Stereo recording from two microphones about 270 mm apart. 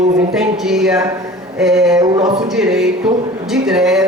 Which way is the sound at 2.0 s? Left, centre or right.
Centre.